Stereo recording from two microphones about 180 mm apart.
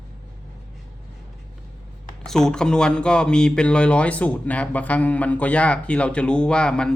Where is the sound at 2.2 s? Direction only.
5° left (ahead or behind).